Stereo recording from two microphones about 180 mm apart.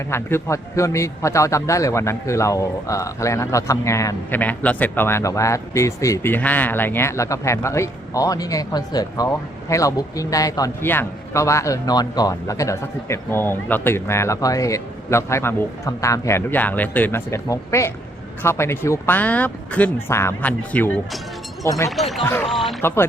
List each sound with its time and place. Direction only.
0.1 s a man's voice: 15° left (ahead or behind)
22.4 s speech: centre (ahead or behind)
22.8 s a man's voice: 10° left (ahead or behind)